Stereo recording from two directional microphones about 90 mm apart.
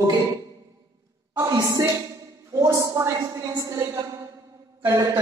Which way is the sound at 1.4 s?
45° right (ahead or behind).